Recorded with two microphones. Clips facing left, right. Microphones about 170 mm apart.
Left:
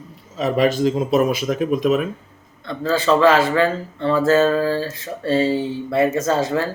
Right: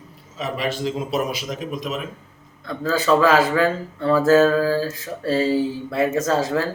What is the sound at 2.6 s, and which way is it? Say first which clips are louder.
Speech: left 2 dB; 5° right (ahead or behind).